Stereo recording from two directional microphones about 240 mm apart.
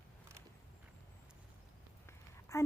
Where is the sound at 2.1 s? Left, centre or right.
Centre.